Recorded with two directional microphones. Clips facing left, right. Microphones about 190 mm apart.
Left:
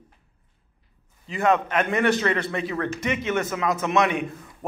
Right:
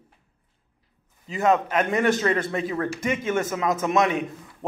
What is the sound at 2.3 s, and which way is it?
Speech, 40° right (ahead or behind).